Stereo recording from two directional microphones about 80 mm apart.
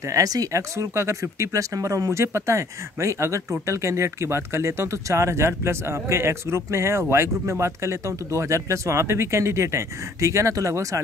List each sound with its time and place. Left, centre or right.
0.1 s speech: right